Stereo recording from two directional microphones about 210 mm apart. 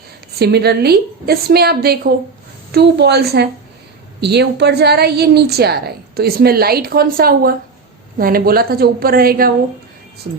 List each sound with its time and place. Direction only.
0.3 s a woman's voice: 50° right (ahead or behind)